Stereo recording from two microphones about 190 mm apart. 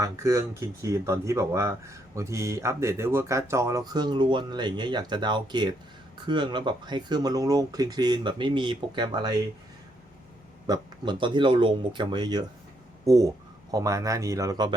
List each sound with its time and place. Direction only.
0.0 s speech: 15° right (ahead or behind)
10.7 s speech: 25° right (ahead or behind)